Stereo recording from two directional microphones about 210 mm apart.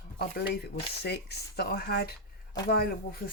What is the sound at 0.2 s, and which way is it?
Speech, 50° left (ahead or behind).